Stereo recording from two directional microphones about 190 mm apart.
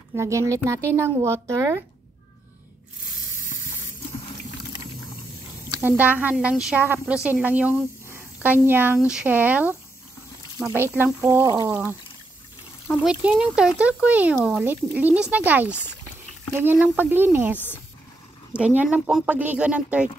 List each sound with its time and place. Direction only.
0.1 s a woman's voice: 15° right (ahead or behind)
5.8 s a woman's voice: 10° right (ahead or behind)
11.4 s speech: 20° right (ahead or behind)
11.7 s a woman's voice: 10° right (ahead or behind)
18.6 s a woman's voice: 10° right (ahead or behind)